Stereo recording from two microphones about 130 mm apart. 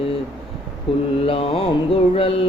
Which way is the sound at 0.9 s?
45° left (ahead or behind).